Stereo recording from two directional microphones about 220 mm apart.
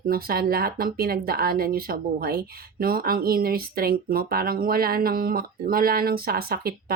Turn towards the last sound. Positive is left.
turn(degrees=-45)  # may be behind; listen again after turning